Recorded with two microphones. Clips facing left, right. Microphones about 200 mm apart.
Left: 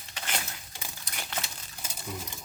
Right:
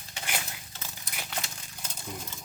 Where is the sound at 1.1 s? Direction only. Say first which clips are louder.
Even; 5° left (ahead or behind).